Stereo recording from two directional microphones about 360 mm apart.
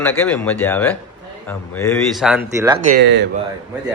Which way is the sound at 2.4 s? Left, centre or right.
Centre.